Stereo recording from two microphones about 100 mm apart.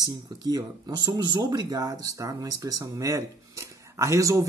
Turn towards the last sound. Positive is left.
turn(degrees=-35)  # may be behind; listen again after turning